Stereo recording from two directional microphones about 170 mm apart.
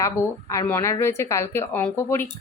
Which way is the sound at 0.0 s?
20° left (ahead or behind).